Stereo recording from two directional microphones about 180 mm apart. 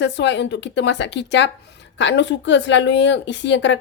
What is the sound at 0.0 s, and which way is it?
Speech, 75° left (ahead or behind).